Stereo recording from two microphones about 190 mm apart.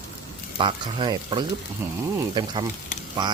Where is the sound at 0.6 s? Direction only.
25° right (ahead or behind).